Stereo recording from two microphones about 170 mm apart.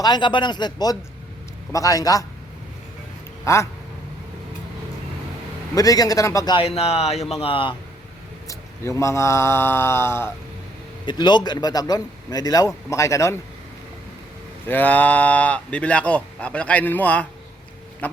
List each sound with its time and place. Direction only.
0.0 s a man's voice: 25° left (ahead or behind)
3.4 s speech: 15° left (ahead or behind)
5.7 s a man's voice: 20° left (ahead or behind)
8.4 s speech: 15° left (ahead or behind)
11.0 s a man's voice: 25° left (ahead or behind)
14.7 s speech: 10° left (ahead or behind)
18.0 s duck: 10° left (ahead or behind)